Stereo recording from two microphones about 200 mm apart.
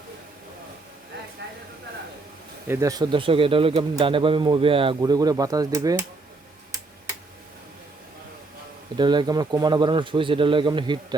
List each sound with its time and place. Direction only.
1.4 s a sound: 55° right (ahead or behind)
2.6 s speech: 15° right (ahead or behind)
9.0 s speech: 20° right (ahead or behind)